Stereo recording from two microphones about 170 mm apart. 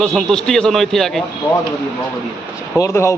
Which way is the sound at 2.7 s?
15° left (ahead or behind).